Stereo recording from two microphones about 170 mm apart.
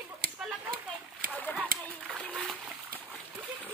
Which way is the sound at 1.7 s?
55° right (ahead or behind).